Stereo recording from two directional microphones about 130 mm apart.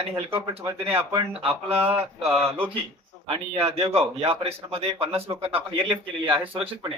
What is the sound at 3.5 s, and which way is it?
A man's voice, 50° right (ahead or behind).